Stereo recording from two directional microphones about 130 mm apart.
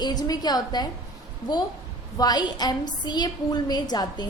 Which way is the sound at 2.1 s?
30° left (ahead or behind).